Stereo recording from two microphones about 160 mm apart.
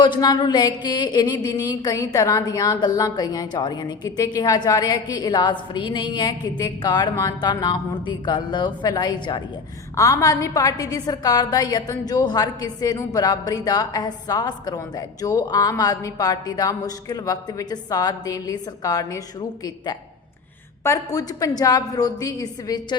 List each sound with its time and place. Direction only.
0.0 s a woman's voice: 25° left (ahead or behind)